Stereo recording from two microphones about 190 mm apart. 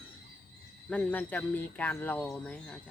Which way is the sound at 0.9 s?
5° left (ahead or behind).